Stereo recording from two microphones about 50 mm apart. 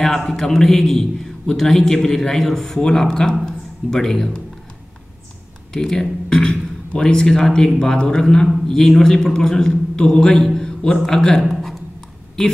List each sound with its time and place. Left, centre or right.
0.0 s a man's voice: centre
5.7 s a man's voice: centre
11.4 s a sound: centre
12.4 s speech: centre